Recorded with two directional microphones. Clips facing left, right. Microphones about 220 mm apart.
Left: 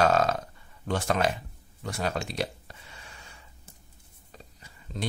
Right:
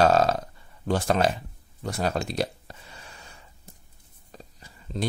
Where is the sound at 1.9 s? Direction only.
35° right (ahead or behind).